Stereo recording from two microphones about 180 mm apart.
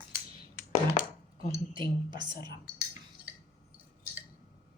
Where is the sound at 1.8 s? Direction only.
25° right (ahead or behind).